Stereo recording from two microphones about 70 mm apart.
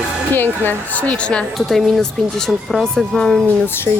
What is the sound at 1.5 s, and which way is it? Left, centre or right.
Speech, centre.